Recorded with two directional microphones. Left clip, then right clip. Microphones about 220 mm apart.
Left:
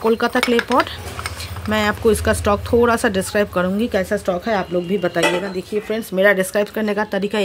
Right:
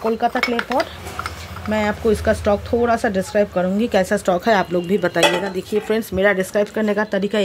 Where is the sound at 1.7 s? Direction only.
10° left (ahead or behind).